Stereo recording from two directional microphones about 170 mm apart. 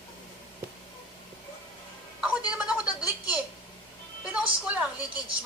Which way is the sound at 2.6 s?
5° right (ahead or behind).